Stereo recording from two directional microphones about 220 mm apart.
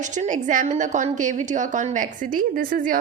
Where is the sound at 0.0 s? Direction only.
35° right (ahead or behind).